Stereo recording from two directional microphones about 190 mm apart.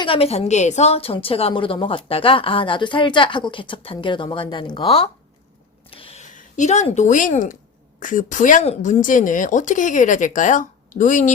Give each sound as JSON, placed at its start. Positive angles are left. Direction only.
{"t": 0.0, "sound": "a woman's voice", "side_deg": 30}
{"t": 5.9, "sound": "a sound", "side_deg": 30}
{"t": 6.3, "sound": "a woman's voice", "side_deg": 40}